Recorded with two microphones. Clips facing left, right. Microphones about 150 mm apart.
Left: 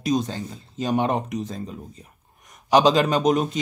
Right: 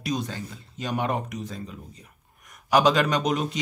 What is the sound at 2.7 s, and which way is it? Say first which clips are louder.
Speech: left 3 dB; 25° left (ahead or behind).